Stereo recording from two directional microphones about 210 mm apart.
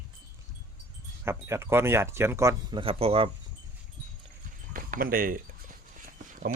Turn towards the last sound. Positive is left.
turn(degrees=-40)  # may be behind; listen again after turning